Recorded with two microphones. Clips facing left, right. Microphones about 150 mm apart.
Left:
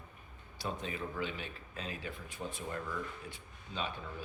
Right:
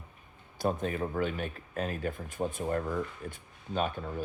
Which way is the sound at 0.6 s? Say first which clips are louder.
Right 9 dB; 50° right (ahead or behind).